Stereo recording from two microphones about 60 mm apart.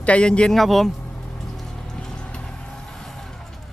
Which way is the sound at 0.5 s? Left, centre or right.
Centre.